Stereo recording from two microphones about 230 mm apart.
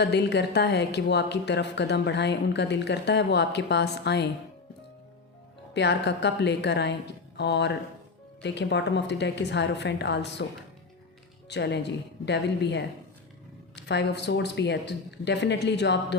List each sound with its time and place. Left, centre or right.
0.0 s speech: left
5.7 s speech: left
11.4 s speech: left